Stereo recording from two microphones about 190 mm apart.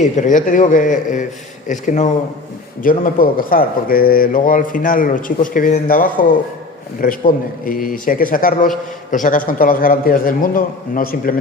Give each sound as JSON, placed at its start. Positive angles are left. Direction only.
{"t": 0.0, "sound": "a man's voice", "side_deg": 40}